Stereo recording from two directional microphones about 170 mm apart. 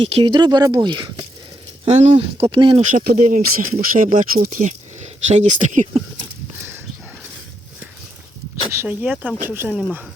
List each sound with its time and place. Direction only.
0.1 s speech: 30° right (ahead or behind)
1.8 s speech: 40° right (ahead or behind)
2.9 s speech: 60° right (ahead or behind); by 6.0 s 45° right (ahead or behind)
8.7 s speech: 10° right (ahead or behind)